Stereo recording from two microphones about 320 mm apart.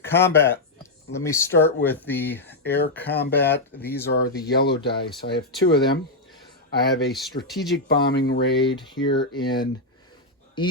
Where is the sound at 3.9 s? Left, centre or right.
Left.